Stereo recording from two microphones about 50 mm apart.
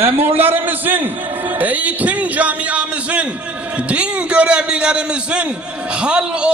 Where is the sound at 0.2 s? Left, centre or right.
Right.